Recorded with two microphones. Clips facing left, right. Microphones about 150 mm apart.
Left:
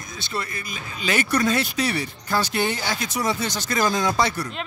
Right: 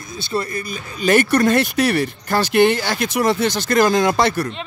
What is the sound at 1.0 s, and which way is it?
Speech, 55° right (ahead or behind).